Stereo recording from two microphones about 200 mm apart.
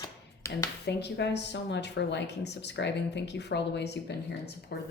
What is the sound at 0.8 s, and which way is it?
Speech, 60° left (ahead or behind).